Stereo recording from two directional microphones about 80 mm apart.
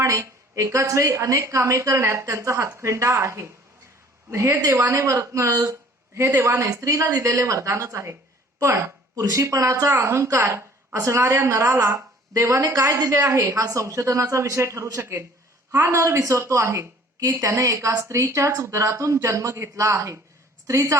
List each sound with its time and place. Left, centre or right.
0.0 s a woman's voice: right
16.0 s a woman's voice: right